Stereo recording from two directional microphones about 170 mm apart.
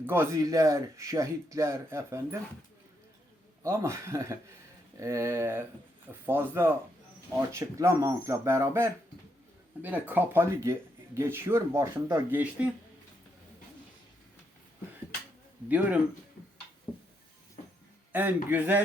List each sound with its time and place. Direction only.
0.0 s speech: 15° right (ahead or behind)
3.6 s speech: 15° right (ahead or behind)
15.7 s speech: 10° right (ahead or behind)
16.9 s a sound: 20° left (ahead or behind)
18.1 s a man's voice: 10° right (ahead or behind)